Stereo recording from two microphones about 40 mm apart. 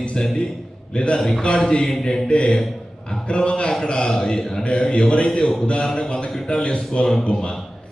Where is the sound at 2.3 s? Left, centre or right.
Left.